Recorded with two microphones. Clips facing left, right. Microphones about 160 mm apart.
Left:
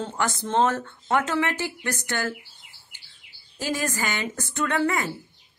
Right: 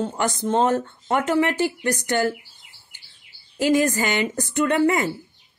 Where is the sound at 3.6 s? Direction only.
20° right (ahead or behind).